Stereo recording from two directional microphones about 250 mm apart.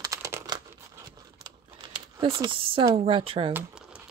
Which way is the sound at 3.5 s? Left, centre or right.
Centre.